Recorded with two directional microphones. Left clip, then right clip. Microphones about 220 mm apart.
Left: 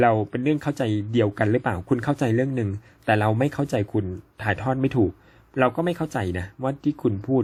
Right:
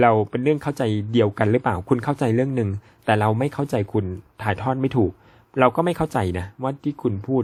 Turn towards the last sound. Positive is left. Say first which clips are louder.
# even
turn(degrees=-5)  # may be behind; listen again after turning